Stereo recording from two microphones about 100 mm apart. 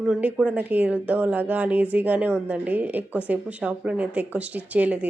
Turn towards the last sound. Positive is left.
turn(degrees=-15)  # may be behind; listen again after turning